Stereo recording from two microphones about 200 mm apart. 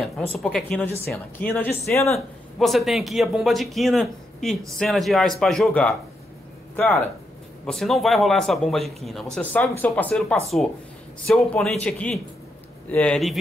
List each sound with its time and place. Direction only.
0.3 s speech: centre (ahead or behind)
2.1 s speech: centre (ahead or behind)